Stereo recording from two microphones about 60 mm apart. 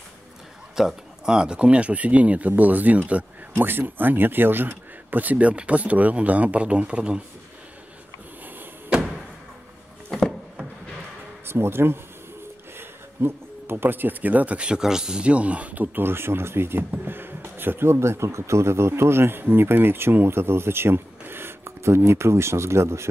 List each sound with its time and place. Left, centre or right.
0.7 s speech: centre; by 3.3 s right
3.5 s speech: right; by 7.2 s centre
8.9 s a sound: centre
11.4 s speech: right